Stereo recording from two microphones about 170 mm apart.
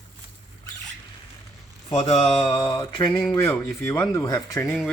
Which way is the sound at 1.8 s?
40° left (ahead or behind).